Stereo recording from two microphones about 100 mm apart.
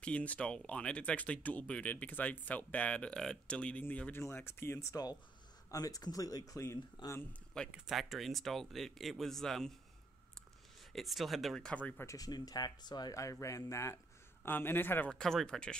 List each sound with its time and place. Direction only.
0.0 s a man's voice: 15° left (ahead or behind)
5.7 s speech: 35° left (ahead or behind)
7.0 s speech: 45° left (ahead or behind)
7.7 s speech: 5° right (ahead or behind)
10.9 s speech: centre (ahead or behind)
12.1 s a man's voice: 40° left (ahead or behind); by 15.0 s 20° left (ahead or behind)
15.0 s speech: 5° left (ahead or behind)